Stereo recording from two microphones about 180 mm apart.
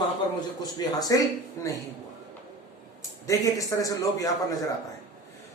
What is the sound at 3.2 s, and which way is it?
A man's voice, 20° left (ahead or behind).